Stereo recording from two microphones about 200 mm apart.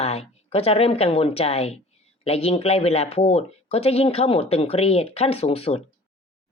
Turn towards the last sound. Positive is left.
turn(degrees=30)  # may be behind; listen again after turning